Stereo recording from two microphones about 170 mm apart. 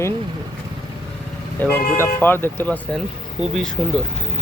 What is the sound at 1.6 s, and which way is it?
Speech, 10° left (ahead or behind).